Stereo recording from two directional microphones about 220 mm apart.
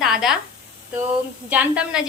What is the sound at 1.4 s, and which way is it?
Speech, 5° right (ahead or behind).